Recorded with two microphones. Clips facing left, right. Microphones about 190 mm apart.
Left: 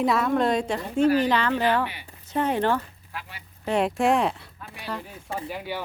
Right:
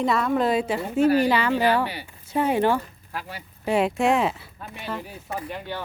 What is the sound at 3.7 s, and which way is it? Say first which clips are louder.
A woman's voice: right 1 dB; centre (ahead or behind).